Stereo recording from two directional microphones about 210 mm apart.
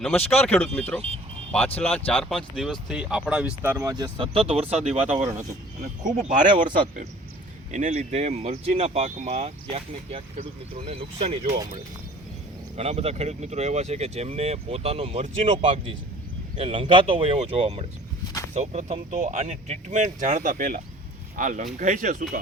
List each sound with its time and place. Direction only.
0.0 s speech: centre (ahead or behind)
2.0 s speech: 5° left (ahead or behind); by 6.5 s 35° right (ahead or behind)
7.7 s speech: 35° right (ahead or behind)
12.7 s speech: 30° right (ahead or behind)